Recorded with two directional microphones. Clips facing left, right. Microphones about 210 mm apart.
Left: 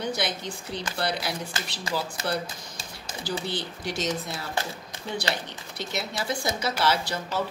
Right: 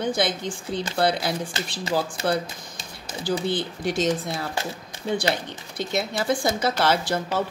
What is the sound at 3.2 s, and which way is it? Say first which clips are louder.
A woman's voice: right 6 dB; 55° right (ahead or behind).